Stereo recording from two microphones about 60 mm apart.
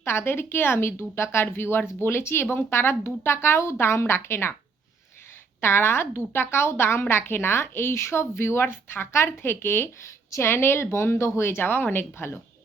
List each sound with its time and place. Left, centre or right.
0.0 s a woman's voice: left
5.5 s a woman's voice: left